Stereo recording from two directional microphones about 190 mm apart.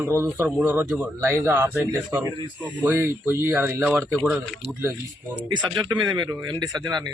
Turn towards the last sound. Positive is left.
turn(degrees=-20)  # may be behind; listen again after turning